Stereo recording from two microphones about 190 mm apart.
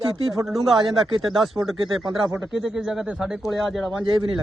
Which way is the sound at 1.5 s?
10° right (ahead or behind).